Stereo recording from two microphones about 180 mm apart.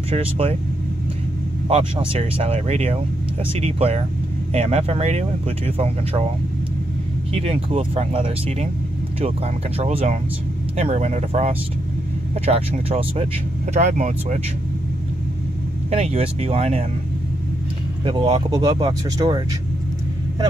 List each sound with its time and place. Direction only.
0.1 s speech: 30° right (ahead or behind)
1.7 s speech: 30° right (ahead or behind)
7.3 s speech: 35° right (ahead or behind)
9.8 s speech: 35° right (ahead or behind)
15.9 s speech: 35° right (ahead or behind)
18.0 s speech: 25° right (ahead or behind)